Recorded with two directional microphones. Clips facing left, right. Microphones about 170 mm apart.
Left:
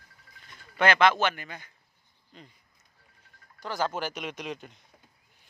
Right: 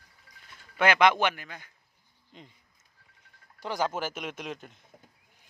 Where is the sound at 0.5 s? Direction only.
10° right (ahead or behind).